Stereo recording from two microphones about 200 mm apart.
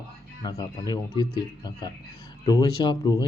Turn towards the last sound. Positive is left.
turn(degrees=20)  # may be behind; listen again after turning